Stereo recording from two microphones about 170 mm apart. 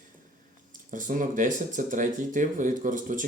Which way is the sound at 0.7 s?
50° right (ahead or behind).